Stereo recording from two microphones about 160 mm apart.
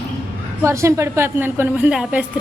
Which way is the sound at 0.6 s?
15° right (ahead or behind).